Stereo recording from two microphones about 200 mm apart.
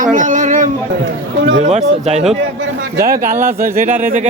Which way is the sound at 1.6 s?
35° right (ahead or behind).